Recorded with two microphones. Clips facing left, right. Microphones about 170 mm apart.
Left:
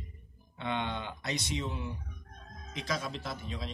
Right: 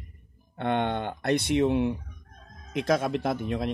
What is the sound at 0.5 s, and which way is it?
A man's voice, 55° right (ahead or behind).